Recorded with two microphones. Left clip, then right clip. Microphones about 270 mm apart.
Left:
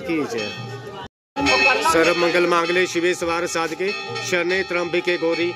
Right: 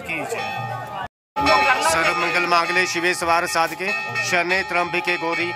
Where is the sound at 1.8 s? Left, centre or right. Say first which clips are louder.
Left 2 dB; centre.